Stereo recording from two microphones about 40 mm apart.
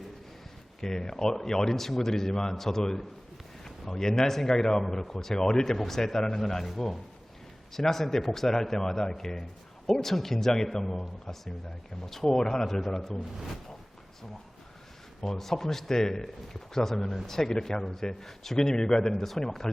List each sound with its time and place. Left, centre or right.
0.8 s a man's voice: centre
10.9 s a man's voice: centre
15.2 s a man's voice: centre